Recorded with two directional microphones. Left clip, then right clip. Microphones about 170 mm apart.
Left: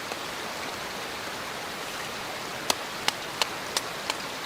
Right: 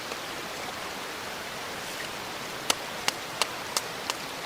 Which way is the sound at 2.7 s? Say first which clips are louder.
Left 1 dB; 15° right (ahead or behind).